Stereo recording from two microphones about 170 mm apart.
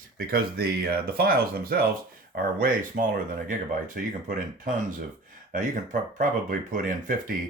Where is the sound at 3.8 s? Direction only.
50° right (ahead or behind).